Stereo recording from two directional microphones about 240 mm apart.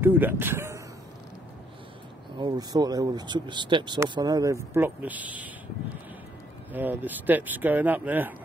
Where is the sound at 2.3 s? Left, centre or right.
Centre.